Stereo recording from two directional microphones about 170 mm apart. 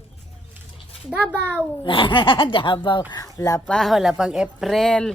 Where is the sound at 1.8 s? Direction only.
30° left (ahead or behind).